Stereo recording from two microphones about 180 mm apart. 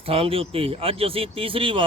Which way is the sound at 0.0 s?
30° right (ahead or behind).